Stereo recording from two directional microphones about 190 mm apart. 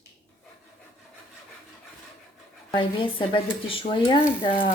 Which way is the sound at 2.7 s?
25° left (ahead or behind).